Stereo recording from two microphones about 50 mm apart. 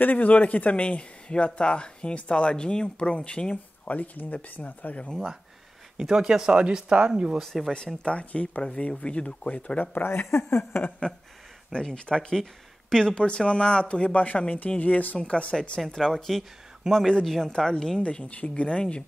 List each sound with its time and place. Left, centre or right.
0.0 s speech: left
3.9 s speech: left
4.9 s speech: left
5.9 s speech: centre
7.4 s speech: centre
8.0 s speech: left
10.0 s speech: left
11.7 s speech: centre
15.9 s speech: centre
18.0 s speech: left